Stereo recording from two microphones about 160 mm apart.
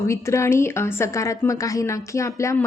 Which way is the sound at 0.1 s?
20° left (ahead or behind).